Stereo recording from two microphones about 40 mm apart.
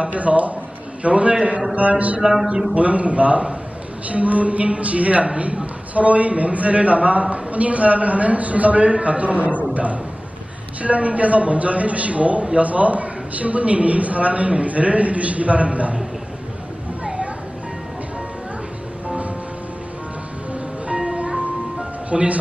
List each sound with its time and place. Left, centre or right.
0.0 s a man's voice: right
10.8 s a man's voice: right
17.0 s a sound: right
19.0 s music: right
20.5 s music: right
22.1 s speech: right